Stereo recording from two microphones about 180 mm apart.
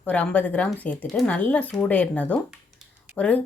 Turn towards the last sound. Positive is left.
turn(degrees=5)  # may be behind; listen again after turning